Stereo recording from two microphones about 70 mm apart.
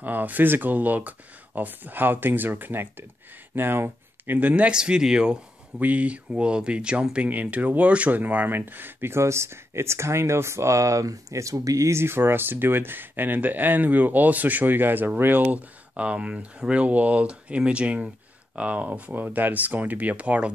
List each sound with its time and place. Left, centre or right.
0.0 s speech: right
5.8 s speech: right